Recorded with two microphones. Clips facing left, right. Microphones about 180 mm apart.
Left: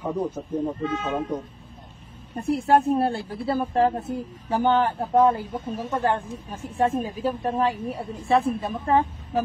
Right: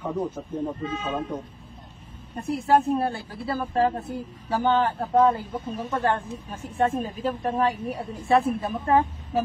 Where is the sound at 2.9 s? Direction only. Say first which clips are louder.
Left 3 dB; 25° left (ahead or behind).